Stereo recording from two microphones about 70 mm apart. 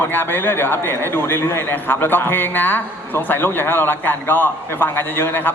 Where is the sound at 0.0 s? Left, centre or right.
Left.